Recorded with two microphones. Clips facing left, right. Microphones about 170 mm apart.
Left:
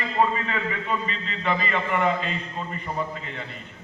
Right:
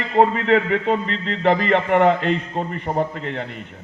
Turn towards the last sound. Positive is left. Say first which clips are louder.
# right 8 dB
turn(degrees=-60)  # may be behind; listen again after turning